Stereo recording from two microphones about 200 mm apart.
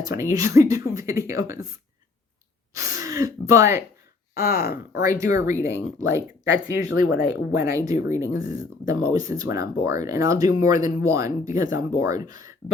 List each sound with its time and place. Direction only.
0.0 s speech: 15° right (ahead or behind)
2.7 s speech: 15° right (ahead or behind)
4.4 s speech: 50° left (ahead or behind)
4.9 s speech: 15° right (ahead or behind)